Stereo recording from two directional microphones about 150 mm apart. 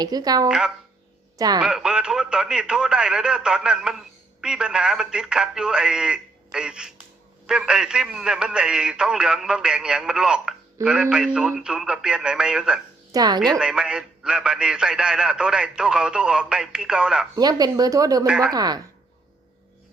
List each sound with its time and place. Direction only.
0.0 s speech: 25° right (ahead or behind)
0.4 s speech: 5° right (ahead or behind)
1.4 s speech: 25° right (ahead or behind)
1.6 s speech: 5° right (ahead or behind)
13.1 s a woman's voice: 25° right (ahead or behind)
13.6 s speech: 5° right (ahead or behind)
17.3 s speech: 25° right (ahead or behind)
18.3 s speech: 5° right (ahead or behind)
18.5 s speech: 25° right (ahead or behind)